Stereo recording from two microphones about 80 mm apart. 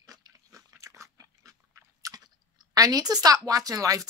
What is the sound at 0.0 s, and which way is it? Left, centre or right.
Pig, right.